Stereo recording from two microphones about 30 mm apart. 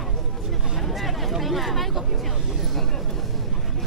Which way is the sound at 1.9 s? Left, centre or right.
Centre.